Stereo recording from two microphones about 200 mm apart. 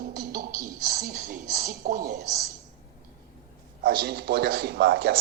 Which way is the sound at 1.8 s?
45° right (ahead or behind).